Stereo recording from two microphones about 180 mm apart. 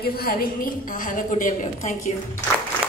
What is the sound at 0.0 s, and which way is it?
A woman's voice, 60° left (ahead or behind).